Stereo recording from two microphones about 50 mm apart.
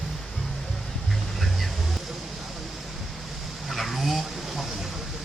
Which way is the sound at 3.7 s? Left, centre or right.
Centre.